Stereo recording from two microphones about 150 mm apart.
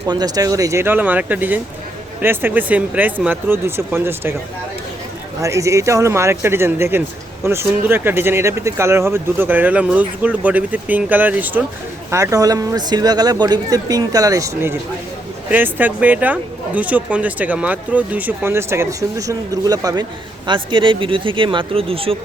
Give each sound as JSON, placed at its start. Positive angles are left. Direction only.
{"t": 0.1, "sound": "speech", "side_deg": -25}
{"t": 5.4, "sound": "speech", "side_deg": -20}